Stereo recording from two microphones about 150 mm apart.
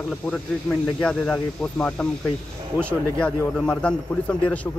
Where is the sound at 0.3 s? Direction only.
5° left (ahead or behind).